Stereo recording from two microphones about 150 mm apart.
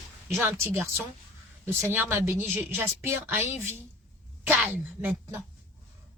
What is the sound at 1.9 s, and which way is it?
Speech, 15° right (ahead or behind).